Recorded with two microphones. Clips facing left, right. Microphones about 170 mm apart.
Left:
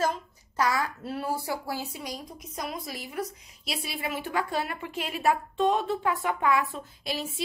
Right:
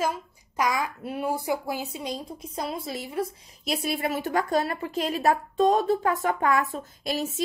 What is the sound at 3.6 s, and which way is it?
A woman's voice, 45° right (ahead or behind).